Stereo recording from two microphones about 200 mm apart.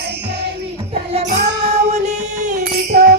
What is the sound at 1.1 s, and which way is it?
Music, 30° right (ahead or behind).